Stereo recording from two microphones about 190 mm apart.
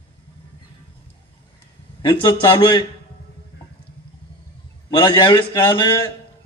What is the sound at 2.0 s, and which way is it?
Speech, 25° left (ahead or behind).